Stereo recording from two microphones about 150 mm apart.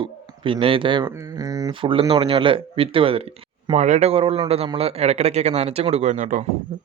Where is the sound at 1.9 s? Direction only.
35° right (ahead or behind).